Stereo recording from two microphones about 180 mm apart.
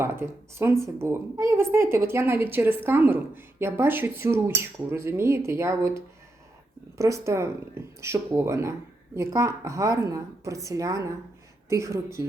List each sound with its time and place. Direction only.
0.0 s speech: 15° right (ahead or behind)
7.0 s speech: 15° right (ahead or behind)